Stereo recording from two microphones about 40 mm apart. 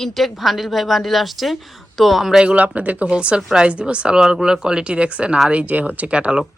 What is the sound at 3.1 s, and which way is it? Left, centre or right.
Speech, right.